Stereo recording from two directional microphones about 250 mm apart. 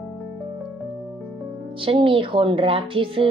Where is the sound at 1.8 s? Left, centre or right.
Right.